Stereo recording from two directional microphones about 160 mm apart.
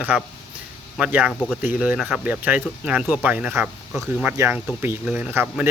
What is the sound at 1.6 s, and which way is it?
Speech, 10° right (ahead or behind).